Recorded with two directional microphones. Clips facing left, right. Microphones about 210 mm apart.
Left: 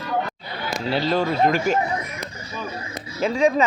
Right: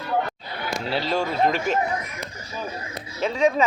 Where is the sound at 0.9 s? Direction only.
5° left (ahead or behind).